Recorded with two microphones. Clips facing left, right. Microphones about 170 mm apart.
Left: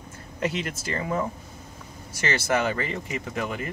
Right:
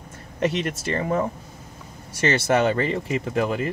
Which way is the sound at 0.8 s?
25° right (ahead or behind).